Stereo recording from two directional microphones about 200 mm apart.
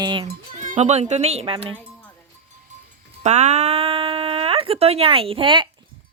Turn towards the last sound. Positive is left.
turn(degrees=-25)  # may be behind; listen again after turning